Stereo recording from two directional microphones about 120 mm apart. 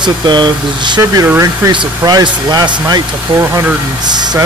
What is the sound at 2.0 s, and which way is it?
Speech, 35° right (ahead or behind).